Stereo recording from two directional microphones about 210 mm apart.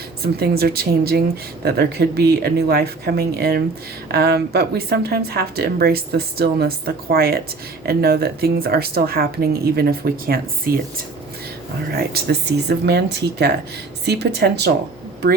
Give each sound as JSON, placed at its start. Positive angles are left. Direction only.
{"t": 0.2, "sound": "a woman's voice", "side_deg": -50}
{"t": 11.9, "sound": "a woman's voice", "side_deg": -50}